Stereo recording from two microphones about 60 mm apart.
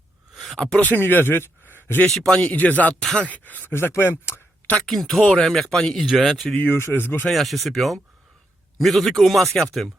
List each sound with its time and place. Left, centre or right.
0.8 s speech: left
2.0 s speech: centre
2.4 s speech: left
2.9 s speech: centre
3.2 s speech: left
3.7 s speech: left
4.9 s speech: centre
6.1 s speech: centre
6.7 s speech: left
6.9 s speech: left
7.3 s speech: centre